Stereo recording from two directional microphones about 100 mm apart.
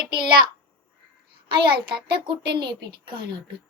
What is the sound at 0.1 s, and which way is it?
A child's voice, 50° right (ahead or behind).